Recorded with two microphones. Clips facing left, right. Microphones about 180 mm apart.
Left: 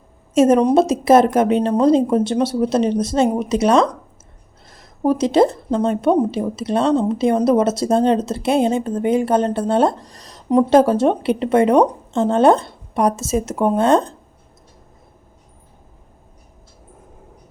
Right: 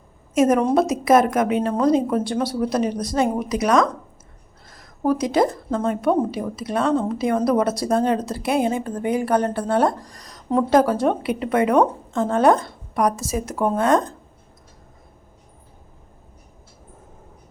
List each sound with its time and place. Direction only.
0.3 s speech: 25° left (ahead or behind)